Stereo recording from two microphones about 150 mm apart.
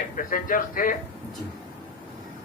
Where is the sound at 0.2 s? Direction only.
65° left (ahead or behind).